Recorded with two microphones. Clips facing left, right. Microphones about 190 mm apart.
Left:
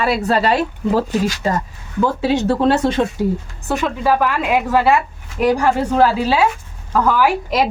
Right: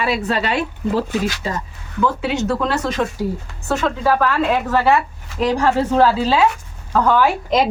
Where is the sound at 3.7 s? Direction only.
15° left (ahead or behind).